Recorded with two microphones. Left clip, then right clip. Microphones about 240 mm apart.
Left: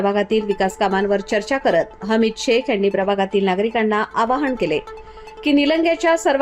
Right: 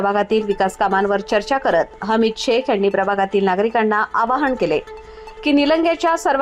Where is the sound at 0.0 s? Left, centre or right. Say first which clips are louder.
Right 1 dB; centre.